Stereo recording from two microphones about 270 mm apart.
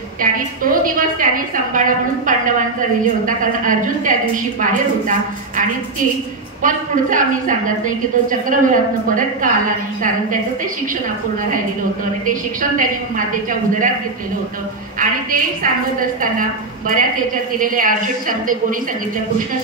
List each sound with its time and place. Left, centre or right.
0.2 s a woman's voice: right
3.0 s a woman's voice: right
6.6 s a woman's voice: right
13.5 s a woman's voice: right
15.0 s a woman's voice: right